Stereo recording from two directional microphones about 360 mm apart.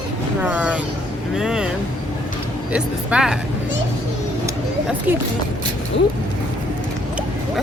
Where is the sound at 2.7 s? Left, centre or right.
Centre.